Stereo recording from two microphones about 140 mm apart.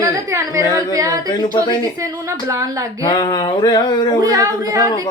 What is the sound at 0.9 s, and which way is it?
Speech, 25° right (ahead or behind).